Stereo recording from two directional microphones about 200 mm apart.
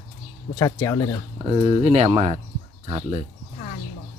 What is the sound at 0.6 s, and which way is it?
Speech, 15° left (ahead or behind).